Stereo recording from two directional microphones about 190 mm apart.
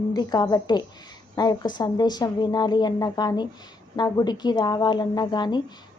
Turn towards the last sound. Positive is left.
turn(degrees=25)  # may be behind; listen again after turning